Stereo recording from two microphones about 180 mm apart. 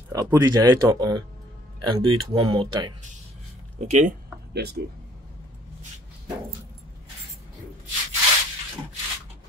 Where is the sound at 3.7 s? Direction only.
45° right (ahead or behind).